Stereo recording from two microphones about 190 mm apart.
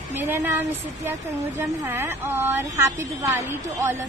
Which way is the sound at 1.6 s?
10° right (ahead or behind).